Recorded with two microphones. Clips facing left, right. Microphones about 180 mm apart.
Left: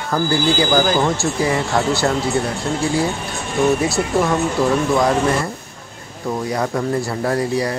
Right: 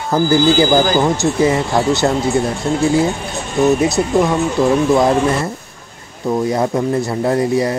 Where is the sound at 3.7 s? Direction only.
20° right (ahead or behind).